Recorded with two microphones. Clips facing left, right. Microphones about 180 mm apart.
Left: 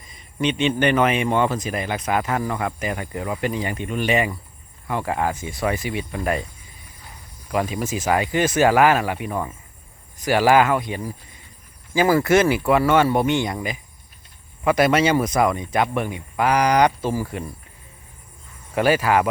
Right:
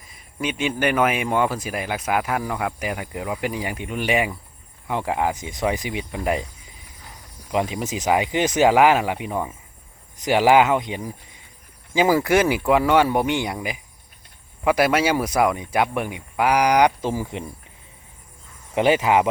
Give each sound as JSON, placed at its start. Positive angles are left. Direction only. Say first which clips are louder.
{"t": 0.0, "sound": "speech", "louder": "left 4 dB", "side_deg": -5}
{"t": 7.5, "sound": "speech", "louder": "even", "side_deg": -20}
{"t": 18.7, "sound": "speech", "louder": "right 1 dB", "side_deg": -20}